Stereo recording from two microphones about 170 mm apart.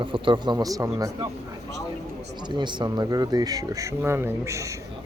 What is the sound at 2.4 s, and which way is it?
A man's voice, 25° right (ahead or behind).